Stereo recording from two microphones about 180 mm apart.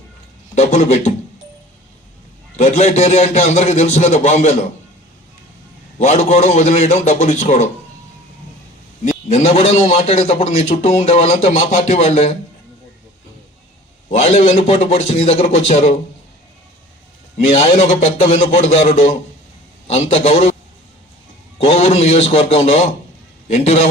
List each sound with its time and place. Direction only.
0.5 s a man's voice: 40° left (ahead or behind)
2.6 s a man's voice: 40° left (ahead or behind)
6.0 s a man's voice: 40° left (ahead or behind)
9.3 s a man's voice: 35° left (ahead or behind)
14.1 s a man's voice: 35° left (ahead or behind)
17.5 s a man's voice: 35° left (ahead or behind)
21.6 s a man's voice: 35° left (ahead or behind)